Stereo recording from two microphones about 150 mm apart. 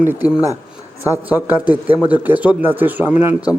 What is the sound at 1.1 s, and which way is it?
A man's voice, 10° right (ahead or behind).